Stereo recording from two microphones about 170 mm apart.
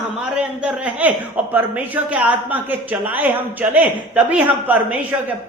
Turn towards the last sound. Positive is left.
turn(degrees=-10)  # may be behind; listen again after turning